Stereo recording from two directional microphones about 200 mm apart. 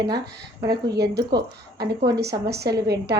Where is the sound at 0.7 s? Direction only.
55° right (ahead or behind).